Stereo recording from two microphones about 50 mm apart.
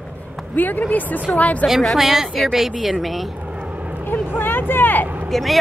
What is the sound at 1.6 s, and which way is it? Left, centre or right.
A woman's voice, centre.